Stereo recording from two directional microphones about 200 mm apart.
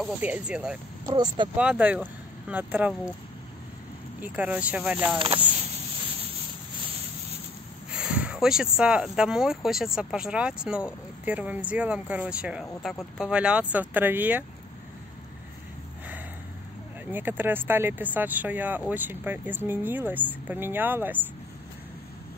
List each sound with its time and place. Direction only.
0.0 s speech: 5° right (ahead or behind)
1.0 s speech: 25° right (ahead or behind)
1.6 s speech: 5° right (ahead or behind)
4.2 s speech: 5° right (ahead or behind)
7.9 s speech: 5° right (ahead or behind)
17.1 s speech: 10° right (ahead or behind)